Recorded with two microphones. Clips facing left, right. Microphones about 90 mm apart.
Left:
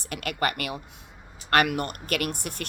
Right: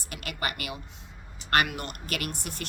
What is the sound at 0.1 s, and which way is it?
Speech, 50° left (ahead or behind).